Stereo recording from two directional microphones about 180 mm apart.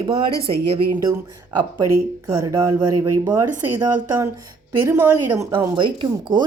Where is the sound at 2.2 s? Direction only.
15° right (ahead or behind).